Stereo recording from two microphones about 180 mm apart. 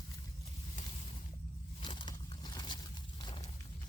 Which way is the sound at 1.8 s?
25° left (ahead or behind).